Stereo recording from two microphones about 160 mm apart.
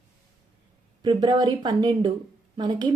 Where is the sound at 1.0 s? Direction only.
25° right (ahead or behind).